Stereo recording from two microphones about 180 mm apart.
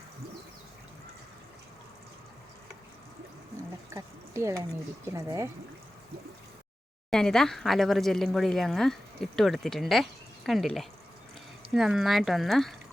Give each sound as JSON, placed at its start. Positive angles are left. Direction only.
{"t": 3.8, "sound": "a sound", "side_deg": -15}
{"t": 5.0, "sound": "speech", "side_deg": -15}
{"t": 7.1, "sound": "speech", "side_deg": 5}